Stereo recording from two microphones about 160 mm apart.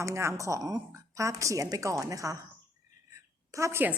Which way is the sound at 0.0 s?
15° right (ahead or behind).